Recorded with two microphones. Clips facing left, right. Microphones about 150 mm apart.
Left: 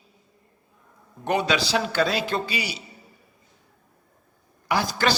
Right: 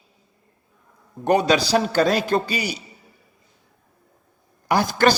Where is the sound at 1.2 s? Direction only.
40° right (ahead or behind).